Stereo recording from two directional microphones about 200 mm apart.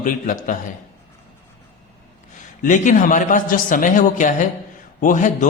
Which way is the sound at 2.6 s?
40° left (ahead or behind).